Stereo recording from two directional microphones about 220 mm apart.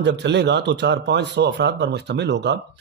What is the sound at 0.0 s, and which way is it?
Speech, 50° right (ahead or behind).